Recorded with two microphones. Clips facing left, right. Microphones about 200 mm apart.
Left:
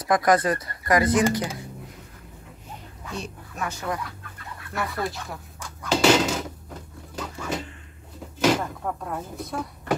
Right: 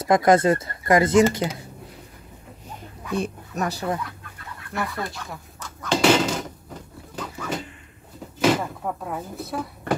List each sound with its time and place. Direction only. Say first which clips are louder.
0.0 s speech: right 3 dB; 25° right (ahead or behind)
3.2 s speech: right 7 dB; 40° right (ahead or behind)
4.7 s speech: even; centre (ahead or behind)
5.6 s a sound: right 1 dB; 10° left (ahead or behind)
8.4 s speech: right 1 dB; 5° right (ahead or behind)